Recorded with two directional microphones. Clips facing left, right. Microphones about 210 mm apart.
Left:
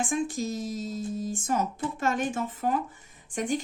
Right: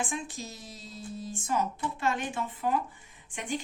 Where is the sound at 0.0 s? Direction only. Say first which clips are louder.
Left 7 dB; 45° left (ahead or behind).